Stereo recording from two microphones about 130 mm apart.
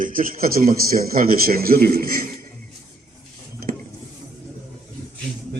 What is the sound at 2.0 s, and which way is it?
Speech, 90° right.